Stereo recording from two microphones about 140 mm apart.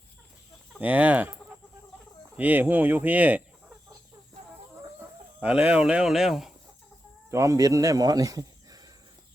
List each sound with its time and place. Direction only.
0.8 s speech: 10° right (ahead or behind)
2.3 s speech: 10° right (ahead or behind)
4.9 s speech: 10° right (ahead or behind)
7.3 s speech: 20° right (ahead or behind)